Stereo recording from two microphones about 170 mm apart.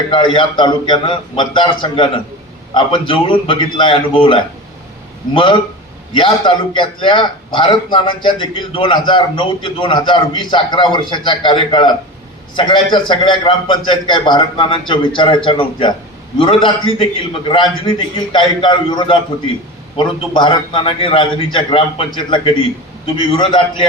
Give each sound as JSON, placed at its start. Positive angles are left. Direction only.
{"t": 0.1, "sound": "a man's voice", "side_deg": 25}